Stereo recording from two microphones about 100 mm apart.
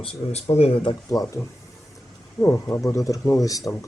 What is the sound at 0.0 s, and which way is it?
Speech, 90° left.